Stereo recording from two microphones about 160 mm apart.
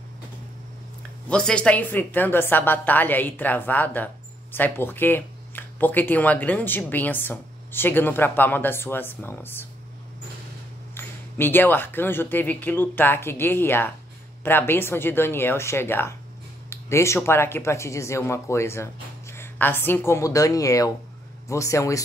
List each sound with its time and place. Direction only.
1.3 s a woman's voice: 5° left (ahead or behind)
11.0 s a woman's voice: 15° left (ahead or behind)